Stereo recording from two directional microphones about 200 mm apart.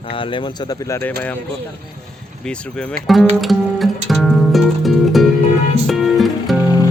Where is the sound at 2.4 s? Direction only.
5° left (ahead or behind).